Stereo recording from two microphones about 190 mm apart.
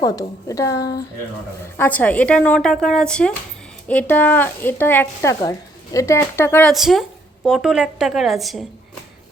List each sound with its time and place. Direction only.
0.0 s a woman's voice: 20° left (ahead or behind)
1.8 s speech: 10° left (ahead or behind)
6.7 s speech: centre (ahead or behind)